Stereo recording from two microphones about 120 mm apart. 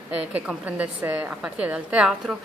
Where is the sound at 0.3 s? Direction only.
15° right (ahead or behind).